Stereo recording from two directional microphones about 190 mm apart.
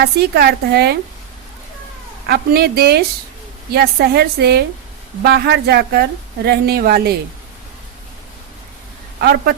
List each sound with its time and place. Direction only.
0.0 s a woman's voice: 55° right (ahead or behind)
2.2 s a woman's voice: 55° right (ahead or behind)
9.2 s a woman's voice: 55° right (ahead or behind)